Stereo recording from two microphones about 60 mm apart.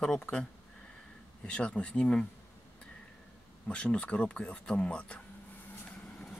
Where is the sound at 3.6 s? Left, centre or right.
Centre.